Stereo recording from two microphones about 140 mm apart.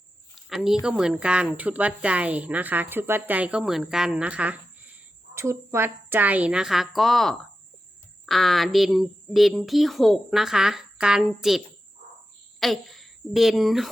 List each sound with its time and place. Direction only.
0.4 s a woman's voice: 5° right (ahead or behind)